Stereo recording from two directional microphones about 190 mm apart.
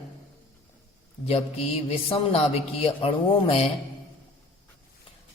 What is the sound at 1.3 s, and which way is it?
A man's voice, 35° left (ahead or behind).